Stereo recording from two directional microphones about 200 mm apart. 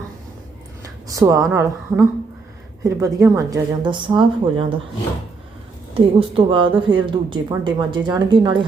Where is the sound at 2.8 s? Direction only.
15° right (ahead or behind).